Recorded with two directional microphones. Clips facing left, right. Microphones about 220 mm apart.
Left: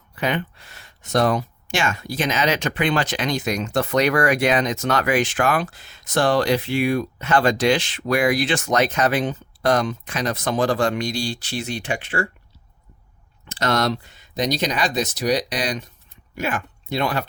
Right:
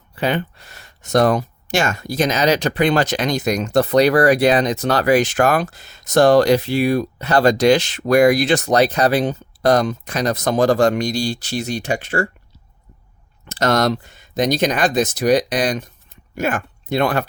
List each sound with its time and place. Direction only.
0.2 s speech: 35° right (ahead or behind)
13.5 s speech: 45° right (ahead or behind)